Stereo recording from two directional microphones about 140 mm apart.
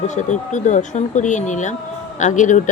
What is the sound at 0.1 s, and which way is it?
Speech, 60° left (ahead or behind).